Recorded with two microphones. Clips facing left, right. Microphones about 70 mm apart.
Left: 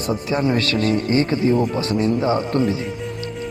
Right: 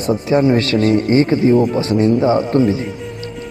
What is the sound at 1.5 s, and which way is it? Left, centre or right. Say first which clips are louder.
Speech: right 6 dB; centre.